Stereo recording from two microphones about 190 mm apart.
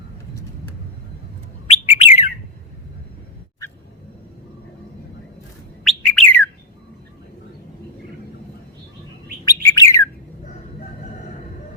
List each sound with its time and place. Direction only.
1.6 s bird: 35° left (ahead or behind)
5.8 s bird: 5° left (ahead or behind)
9.4 s bird: 15° left (ahead or behind)